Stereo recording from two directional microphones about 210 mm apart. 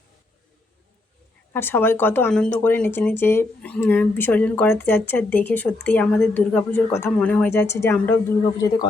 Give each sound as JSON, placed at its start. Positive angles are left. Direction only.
{"t": 1.5, "sound": "speech", "side_deg": 10}